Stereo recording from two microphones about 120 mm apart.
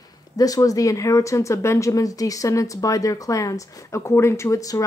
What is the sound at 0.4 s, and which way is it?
Speech, 30° left (ahead or behind).